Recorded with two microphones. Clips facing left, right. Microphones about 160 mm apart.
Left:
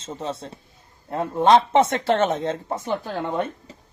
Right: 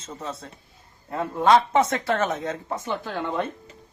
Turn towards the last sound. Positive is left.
turn(degrees=20)  # may be behind; listen again after turning